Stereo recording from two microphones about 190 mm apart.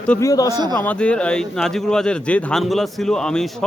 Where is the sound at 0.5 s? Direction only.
20° right (ahead or behind).